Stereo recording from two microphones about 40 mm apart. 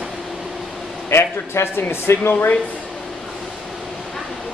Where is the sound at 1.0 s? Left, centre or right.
Left.